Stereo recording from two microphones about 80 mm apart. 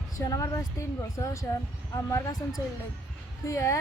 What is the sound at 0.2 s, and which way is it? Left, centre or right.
Speech, left.